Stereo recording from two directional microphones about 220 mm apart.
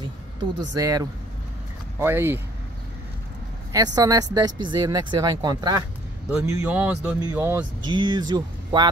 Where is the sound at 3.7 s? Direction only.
15° right (ahead or behind).